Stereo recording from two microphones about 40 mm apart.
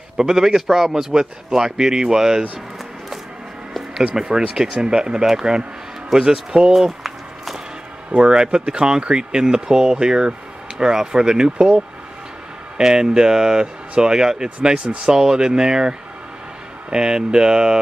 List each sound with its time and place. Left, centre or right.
0.2 s a man's voice: centre
4.1 s a man's voice: centre
6.0 s a sound: centre
8.2 s speech: centre
12.7 s a man's voice: centre